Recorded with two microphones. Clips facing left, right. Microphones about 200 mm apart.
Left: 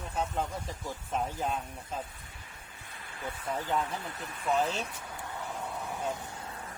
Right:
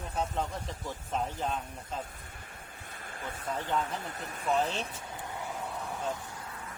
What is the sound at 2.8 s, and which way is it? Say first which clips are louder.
Speech: left 1 dB; 45° right (ahead or behind).